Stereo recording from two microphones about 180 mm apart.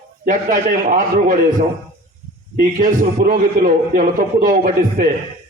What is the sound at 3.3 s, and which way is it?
A man's voice, 50° right (ahead or behind).